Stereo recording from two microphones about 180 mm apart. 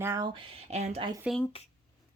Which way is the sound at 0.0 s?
15° right (ahead or behind).